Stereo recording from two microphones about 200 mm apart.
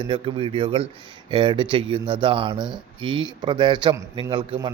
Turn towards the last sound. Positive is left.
turn(degrees=-25)  # may be behind; listen again after turning